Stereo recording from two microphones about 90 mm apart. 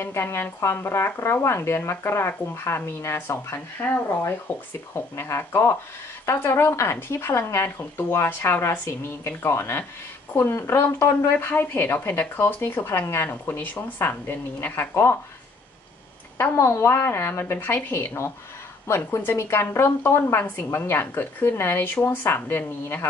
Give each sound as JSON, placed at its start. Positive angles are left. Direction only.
{"t": 0.0, "sound": "speech", "side_deg": 30}
{"t": 16.3, "sound": "speech", "side_deg": 30}